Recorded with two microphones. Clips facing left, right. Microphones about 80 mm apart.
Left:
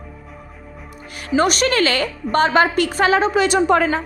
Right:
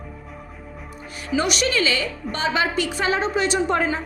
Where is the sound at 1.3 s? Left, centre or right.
Left.